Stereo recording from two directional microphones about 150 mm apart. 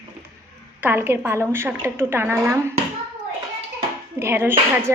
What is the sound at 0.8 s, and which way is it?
A woman's voice, 15° right (ahead or behind).